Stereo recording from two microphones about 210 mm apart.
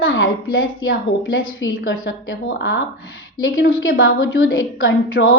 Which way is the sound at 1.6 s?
60° left (ahead or behind).